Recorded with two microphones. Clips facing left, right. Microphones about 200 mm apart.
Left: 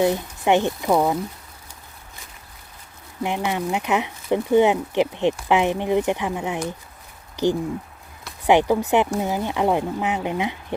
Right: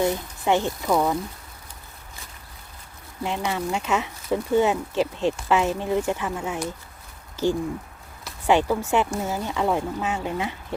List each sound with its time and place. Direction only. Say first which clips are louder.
0.0 s speech: left 3 dB; 20° left (ahead or behind)
3.2 s speech: left 2 dB; 15° left (ahead or behind)
8.4 s speech: left 3 dB; 15° left (ahead or behind)